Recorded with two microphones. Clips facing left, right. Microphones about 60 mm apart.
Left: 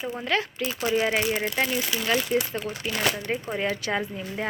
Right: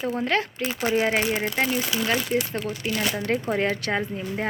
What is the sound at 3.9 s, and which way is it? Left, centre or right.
Speech, right.